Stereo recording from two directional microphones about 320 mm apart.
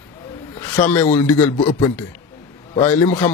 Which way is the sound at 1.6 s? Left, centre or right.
Centre.